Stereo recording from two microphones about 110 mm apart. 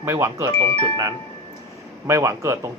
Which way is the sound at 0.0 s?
25° right (ahead or behind).